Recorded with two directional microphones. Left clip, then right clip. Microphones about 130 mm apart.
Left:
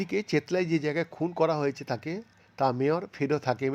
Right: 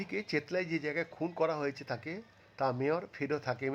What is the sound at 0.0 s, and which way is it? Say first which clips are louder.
A man's voice: left 7 dB; 35° left (ahead or behind).